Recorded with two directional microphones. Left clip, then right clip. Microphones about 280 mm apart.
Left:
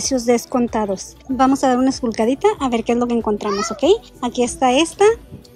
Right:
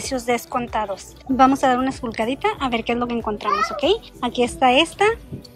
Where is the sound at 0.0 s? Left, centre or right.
Centre.